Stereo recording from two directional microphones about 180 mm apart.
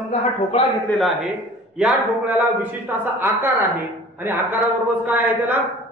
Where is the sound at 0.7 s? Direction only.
Centre (ahead or behind).